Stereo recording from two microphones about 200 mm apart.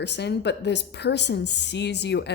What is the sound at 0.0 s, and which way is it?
A woman's voice, 60° left (ahead or behind).